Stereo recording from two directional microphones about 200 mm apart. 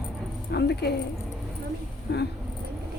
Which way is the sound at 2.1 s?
55° left (ahead or behind).